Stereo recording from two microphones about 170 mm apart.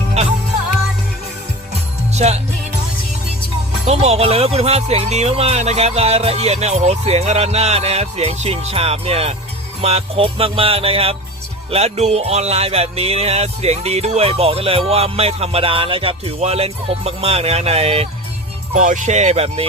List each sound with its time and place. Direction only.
2.1 s music: 40° right (ahead or behind)
3.8 s music: 40° right (ahead or behind)
18.7 s speech: 45° right (ahead or behind)